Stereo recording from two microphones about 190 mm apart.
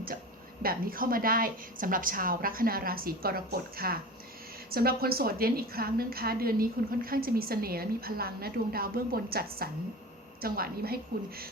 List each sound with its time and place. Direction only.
0.6 s a woman's voice: 50° right (ahead or behind)